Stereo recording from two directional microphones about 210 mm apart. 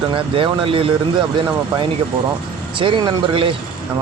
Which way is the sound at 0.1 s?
25° right (ahead or behind).